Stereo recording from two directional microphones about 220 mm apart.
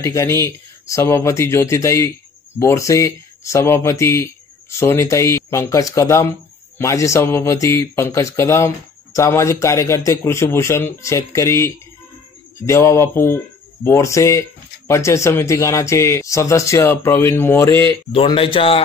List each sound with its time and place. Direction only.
0.0 s speech: 15° left (ahead or behind)
18.1 s speech: 25° left (ahead or behind)